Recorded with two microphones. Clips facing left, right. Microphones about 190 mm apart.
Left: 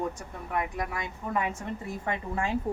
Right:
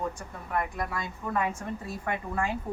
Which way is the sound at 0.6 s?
15° left (ahead or behind).